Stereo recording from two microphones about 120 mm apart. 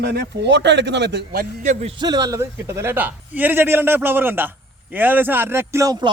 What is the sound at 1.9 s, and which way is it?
A man's voice, 35° right (ahead or behind).